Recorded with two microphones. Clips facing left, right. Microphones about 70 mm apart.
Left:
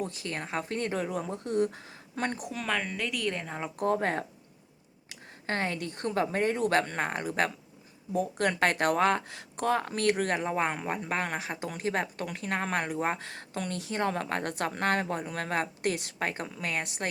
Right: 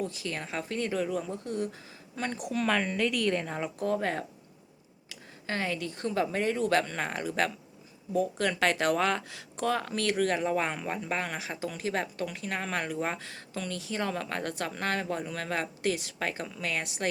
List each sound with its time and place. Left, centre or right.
0.0 s a woman's voice: left
0.6 s speech: left
1.2 s speech: left
2.5 s a woman's voice: centre
3.8 s a woman's voice: left
5.5 s a woman's voice: left
10.0 s speech: left
11.1 s a woman's voice: left
13.1 s a woman's voice: left
15.8 s speech: left
16.6 s speech: left